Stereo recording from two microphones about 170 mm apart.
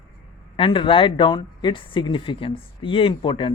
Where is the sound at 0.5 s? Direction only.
30° left (ahead or behind).